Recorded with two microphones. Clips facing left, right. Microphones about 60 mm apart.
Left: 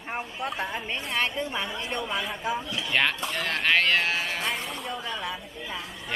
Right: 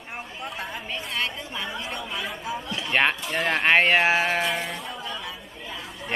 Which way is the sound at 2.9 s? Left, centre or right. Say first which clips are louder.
Right 3 dB; centre.